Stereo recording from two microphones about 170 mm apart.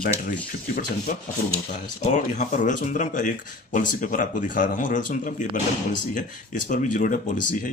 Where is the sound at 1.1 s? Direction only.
50° left (ahead or behind).